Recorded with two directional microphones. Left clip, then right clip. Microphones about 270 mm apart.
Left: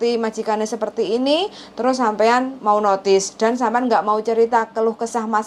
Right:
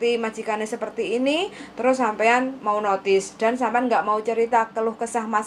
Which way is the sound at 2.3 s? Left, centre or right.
Left.